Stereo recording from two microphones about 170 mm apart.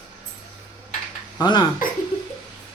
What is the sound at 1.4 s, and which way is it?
Speech, 25° left (ahead or behind).